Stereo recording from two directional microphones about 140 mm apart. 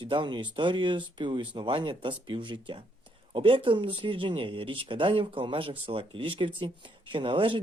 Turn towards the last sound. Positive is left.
turn(degrees=-35)  # may be behind; listen again after turning